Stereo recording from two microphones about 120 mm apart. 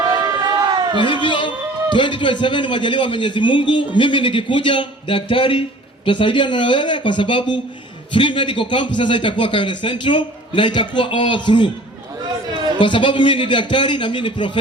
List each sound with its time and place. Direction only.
0.1 s run: 25° right (ahead or behind)
0.9 s a man's voice: 40° left (ahead or behind)
12.8 s a man's voice: 45° left (ahead or behind)